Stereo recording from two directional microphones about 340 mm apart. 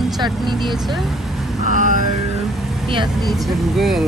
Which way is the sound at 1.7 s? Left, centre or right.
Right.